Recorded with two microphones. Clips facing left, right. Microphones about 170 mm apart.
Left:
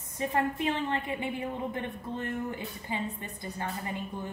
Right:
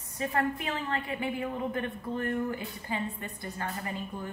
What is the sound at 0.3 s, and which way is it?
A woman's voice, 25° left (ahead or behind).